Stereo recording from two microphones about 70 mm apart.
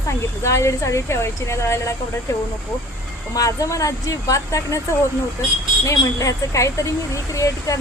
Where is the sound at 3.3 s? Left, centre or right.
Left.